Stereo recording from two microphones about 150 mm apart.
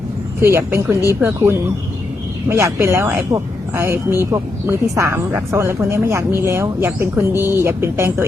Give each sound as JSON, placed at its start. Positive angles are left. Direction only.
{"t": 0.4, "sound": "speech", "side_deg": -15}